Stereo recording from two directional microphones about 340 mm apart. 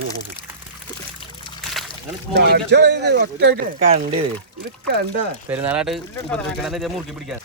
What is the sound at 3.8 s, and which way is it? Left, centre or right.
Speech, centre.